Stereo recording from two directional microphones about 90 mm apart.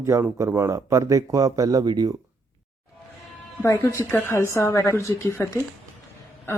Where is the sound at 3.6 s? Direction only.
35° left (ahead or behind).